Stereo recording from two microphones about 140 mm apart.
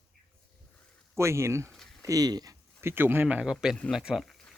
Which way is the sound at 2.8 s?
15° right (ahead or behind).